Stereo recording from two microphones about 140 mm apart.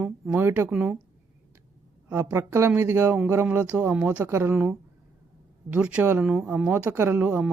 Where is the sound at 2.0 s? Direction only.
15° right (ahead or behind).